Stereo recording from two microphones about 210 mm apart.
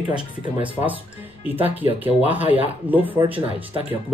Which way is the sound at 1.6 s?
25° right (ahead or behind).